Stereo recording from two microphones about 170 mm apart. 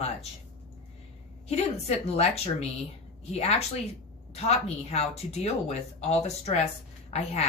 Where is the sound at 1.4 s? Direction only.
40° left (ahead or behind).